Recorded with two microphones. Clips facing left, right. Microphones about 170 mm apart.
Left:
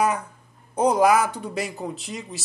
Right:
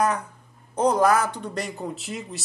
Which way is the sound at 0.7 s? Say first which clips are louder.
Left 1 dB; 10° left (ahead or behind).